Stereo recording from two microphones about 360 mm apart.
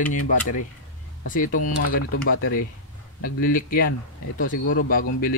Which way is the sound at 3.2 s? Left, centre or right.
Left.